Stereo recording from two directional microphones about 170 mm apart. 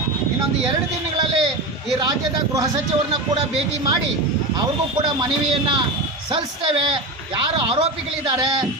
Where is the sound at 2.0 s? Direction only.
25° right (ahead or behind).